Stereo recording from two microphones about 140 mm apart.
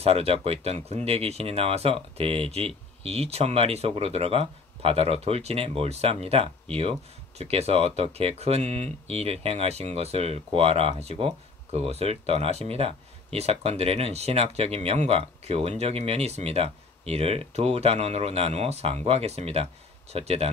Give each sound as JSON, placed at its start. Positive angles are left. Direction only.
{"t": 0.0, "sound": "speech", "side_deg": -45}